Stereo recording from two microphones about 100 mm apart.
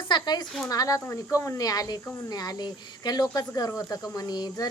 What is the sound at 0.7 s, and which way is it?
Speech, 35° left (ahead or behind).